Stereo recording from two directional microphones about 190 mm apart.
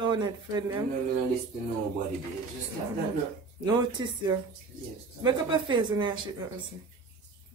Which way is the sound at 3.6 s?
20° right (ahead or behind).